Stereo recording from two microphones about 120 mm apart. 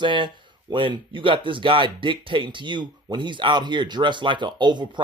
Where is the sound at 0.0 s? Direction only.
40° right (ahead or behind).